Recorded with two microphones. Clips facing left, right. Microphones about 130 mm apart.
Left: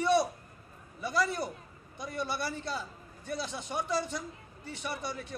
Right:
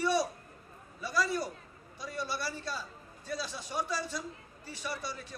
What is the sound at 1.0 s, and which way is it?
A man's voice, 20° left (ahead or behind).